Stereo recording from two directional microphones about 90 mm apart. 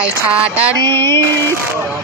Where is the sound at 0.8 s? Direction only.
25° left (ahead or behind).